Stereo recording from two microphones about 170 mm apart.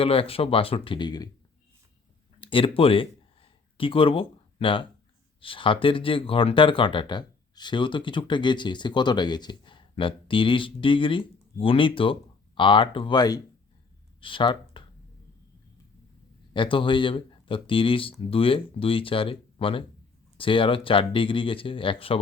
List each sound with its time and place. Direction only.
0.0 s speech: 35° left (ahead or behind)
2.4 s a sound: 30° left (ahead or behind)
5.4 s speech: 30° left (ahead or behind)
16.6 s speech: 30° left (ahead or behind)